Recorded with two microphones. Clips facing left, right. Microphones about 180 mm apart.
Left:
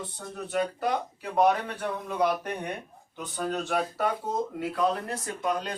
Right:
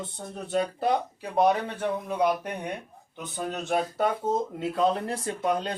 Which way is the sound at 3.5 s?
20° right (ahead or behind).